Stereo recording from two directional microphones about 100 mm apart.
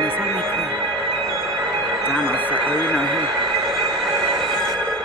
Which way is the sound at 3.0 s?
50° right (ahead or behind).